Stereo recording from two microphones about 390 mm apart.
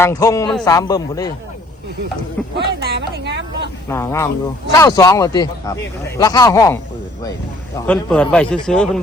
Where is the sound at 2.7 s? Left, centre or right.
Right.